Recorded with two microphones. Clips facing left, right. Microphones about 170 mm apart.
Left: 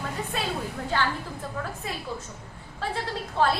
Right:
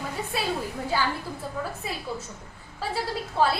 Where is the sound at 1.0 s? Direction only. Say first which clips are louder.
Left 1 dB; 10° right (ahead or behind).